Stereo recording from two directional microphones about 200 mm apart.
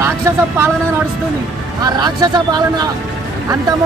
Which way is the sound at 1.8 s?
20° right (ahead or behind).